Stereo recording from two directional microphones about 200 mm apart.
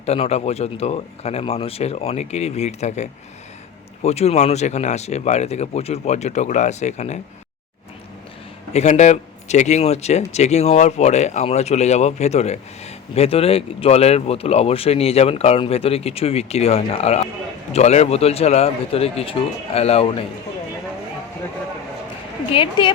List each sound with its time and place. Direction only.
0.0 s speech: 30° left (ahead or behind)
8.7 s speech: 35° left (ahead or behind)
22.5 s speech: 25° left (ahead or behind)